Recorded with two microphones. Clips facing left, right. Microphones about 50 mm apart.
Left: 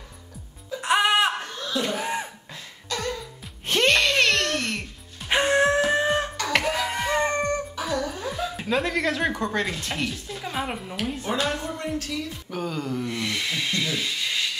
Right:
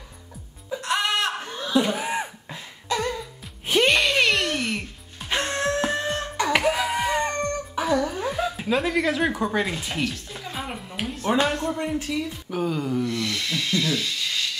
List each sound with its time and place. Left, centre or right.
0.7 s music: centre
1.4 s a sound: centre
5.3 s music: centre
5.8 s a sound: centre
6.3 s music: centre
7.2 s a sound: centre
7.7 s music: centre
8.5 s speech: centre
10.4 s music: centre
11.3 s speech: centre
13.0 s speech: centre